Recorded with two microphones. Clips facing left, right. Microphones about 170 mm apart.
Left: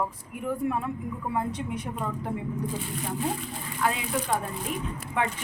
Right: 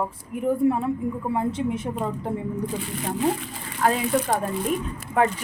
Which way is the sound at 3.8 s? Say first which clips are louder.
Right 6 dB; 45° right (ahead or behind).